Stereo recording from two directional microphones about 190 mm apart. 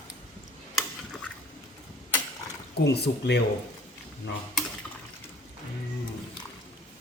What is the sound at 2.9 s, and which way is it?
Speech, 60° left (ahead or behind).